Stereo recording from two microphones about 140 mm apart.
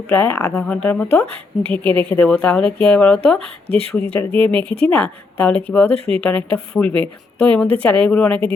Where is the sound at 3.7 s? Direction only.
45° right (ahead or behind).